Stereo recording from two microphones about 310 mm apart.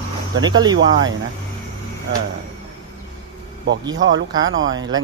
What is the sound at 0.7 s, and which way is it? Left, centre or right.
Speech, right.